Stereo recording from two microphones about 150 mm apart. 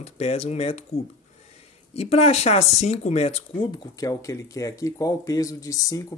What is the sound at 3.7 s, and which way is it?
Speech, 25° left (ahead or behind).